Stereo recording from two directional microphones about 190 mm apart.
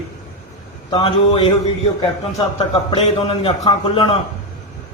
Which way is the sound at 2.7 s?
30° left (ahead or behind).